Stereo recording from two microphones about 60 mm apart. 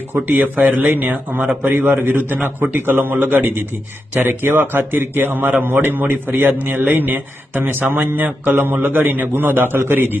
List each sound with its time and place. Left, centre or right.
0.1 s a man's voice: right